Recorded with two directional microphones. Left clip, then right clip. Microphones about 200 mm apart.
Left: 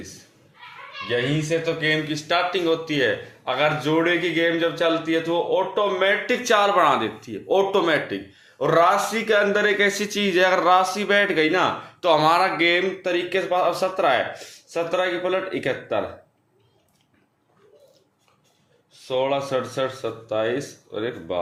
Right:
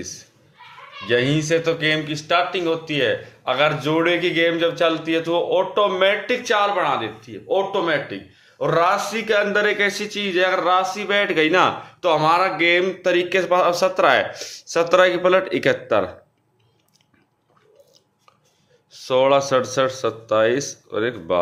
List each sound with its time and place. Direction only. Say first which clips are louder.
1.0 s speech: right 4 dB; 35° right (ahead or behind); by 6.1 s 15° right (ahead or behind)
6.2 s speech: right 1 dB; centre (ahead or behind)
6.5 s speech: left 2 dB; 15° left (ahead or behind); by 12.9 s 10° right (ahead or behind)
13.0 s speech: right 5 dB; 25° right (ahead or behind)
19.0 s speech: right 7 dB; 30° right (ahead or behind)